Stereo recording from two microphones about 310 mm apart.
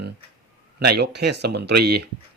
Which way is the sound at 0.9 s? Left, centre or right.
Right.